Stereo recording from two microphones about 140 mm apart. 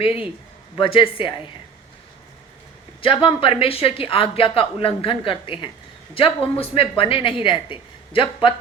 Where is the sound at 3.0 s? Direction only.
40° left (ahead or behind).